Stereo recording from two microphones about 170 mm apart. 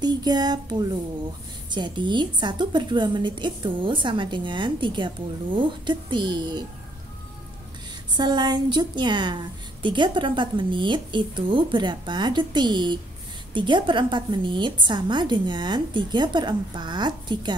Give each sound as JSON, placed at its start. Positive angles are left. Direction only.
{"t": 0.0, "sound": "a woman's voice", "side_deg": -25}
{"t": 8.1, "sound": "a woman's voice", "side_deg": -25}